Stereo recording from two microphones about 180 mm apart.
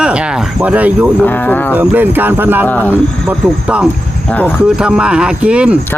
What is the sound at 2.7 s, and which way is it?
Speech, 10° left (ahead or behind).